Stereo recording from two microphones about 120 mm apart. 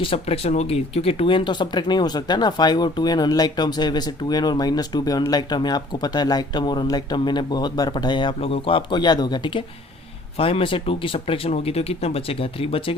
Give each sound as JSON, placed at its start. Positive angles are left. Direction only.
{"t": 0.0, "sound": "speech", "side_deg": 50}